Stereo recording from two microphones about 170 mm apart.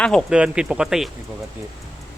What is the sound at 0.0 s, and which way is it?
Speech, centre (ahead or behind).